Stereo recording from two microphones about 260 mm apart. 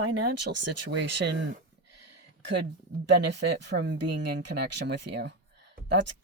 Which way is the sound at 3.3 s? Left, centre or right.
Right.